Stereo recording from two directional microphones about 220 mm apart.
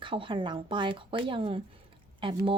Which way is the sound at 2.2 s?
25° right (ahead or behind).